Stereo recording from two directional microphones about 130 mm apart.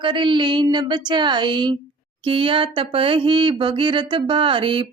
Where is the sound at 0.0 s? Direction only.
40° right (ahead or behind).